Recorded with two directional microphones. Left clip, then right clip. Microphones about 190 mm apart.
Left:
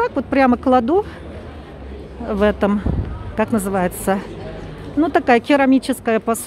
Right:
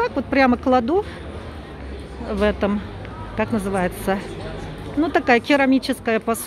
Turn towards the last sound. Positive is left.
turn(degrees=15)  # may be behind; listen again after turning